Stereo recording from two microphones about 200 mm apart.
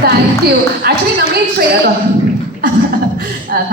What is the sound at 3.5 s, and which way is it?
Speech, 45° right (ahead or behind).